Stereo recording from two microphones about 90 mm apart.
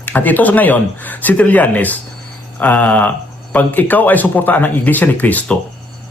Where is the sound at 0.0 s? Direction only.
20° left (ahead or behind).